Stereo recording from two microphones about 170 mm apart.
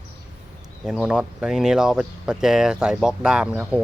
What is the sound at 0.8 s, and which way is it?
Speech, 5° right (ahead or behind).